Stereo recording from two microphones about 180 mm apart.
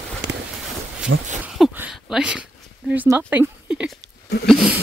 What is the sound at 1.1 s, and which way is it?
Speech, 90° right.